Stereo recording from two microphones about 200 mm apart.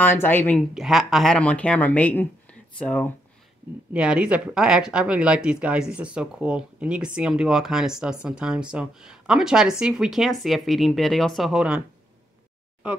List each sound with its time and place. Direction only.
0.0 s speech: 10° left (ahead or behind)
0.7 s speech: centre (ahead or behind)
3.9 s speech: 5° right (ahead or behind)